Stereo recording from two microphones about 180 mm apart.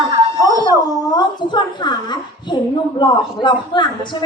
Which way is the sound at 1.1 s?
25° left (ahead or behind).